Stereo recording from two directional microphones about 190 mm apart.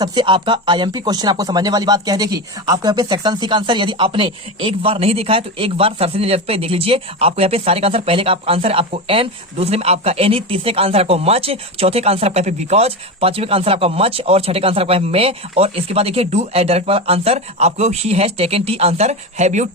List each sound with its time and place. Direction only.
0.0 s speech: 25° right (ahead or behind)